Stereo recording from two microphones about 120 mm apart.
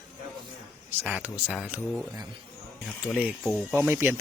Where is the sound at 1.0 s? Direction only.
15° right (ahead or behind).